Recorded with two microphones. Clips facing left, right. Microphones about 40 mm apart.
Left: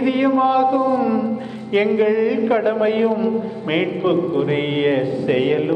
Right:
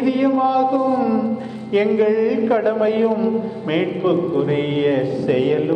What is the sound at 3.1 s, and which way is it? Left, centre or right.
Speech, centre.